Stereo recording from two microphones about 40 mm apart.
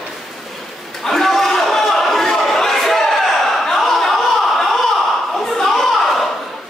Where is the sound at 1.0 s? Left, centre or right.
Centre.